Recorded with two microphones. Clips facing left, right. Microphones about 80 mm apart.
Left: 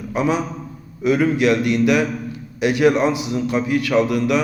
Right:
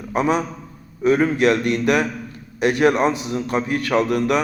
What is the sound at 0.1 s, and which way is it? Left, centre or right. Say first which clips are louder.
A man's voice: right 1 dB; right.